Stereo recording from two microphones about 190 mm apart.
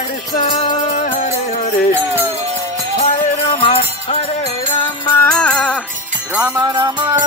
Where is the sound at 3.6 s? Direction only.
30° left (ahead or behind).